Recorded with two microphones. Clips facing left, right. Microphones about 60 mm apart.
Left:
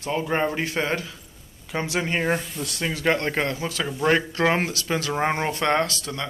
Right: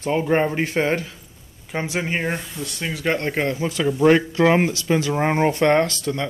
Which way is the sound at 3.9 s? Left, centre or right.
Centre.